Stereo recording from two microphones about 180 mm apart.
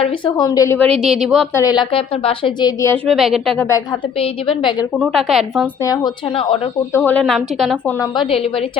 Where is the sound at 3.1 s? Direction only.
Centre (ahead or behind).